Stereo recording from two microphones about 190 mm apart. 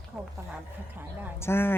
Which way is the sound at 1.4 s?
10° left (ahead or behind).